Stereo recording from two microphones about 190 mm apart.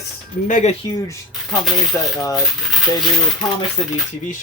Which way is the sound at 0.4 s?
40° left (ahead or behind).